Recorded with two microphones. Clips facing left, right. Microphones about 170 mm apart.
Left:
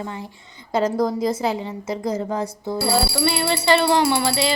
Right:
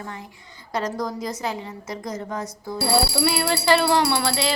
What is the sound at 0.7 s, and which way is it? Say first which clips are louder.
A woman's voice: left 6 dB; 25° left (ahead or behind).